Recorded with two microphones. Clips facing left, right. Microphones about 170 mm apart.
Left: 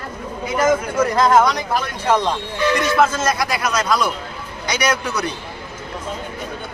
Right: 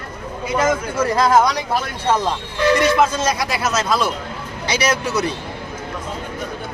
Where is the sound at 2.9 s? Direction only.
20° right (ahead or behind).